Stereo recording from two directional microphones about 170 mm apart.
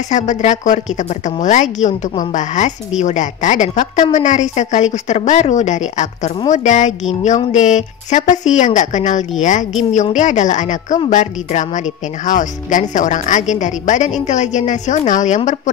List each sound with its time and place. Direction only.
0.1 s a woman's voice: 45° left (ahead or behind)